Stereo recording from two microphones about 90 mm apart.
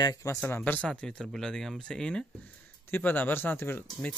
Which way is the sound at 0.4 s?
20° left (ahead or behind).